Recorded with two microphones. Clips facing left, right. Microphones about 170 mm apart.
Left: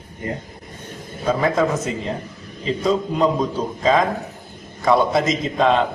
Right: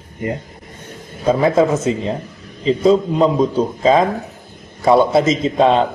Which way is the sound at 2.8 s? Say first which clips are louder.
Right 5 dB; 30° right (ahead or behind).